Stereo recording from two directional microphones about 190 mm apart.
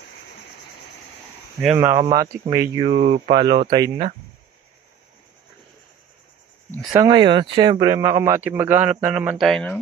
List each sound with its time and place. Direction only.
1.7 s speech: 15° right (ahead or behind)
2.9 s speech: 35° right (ahead or behind)
6.9 s speech: 20° right (ahead or behind); by 9.8 s 5° left (ahead or behind)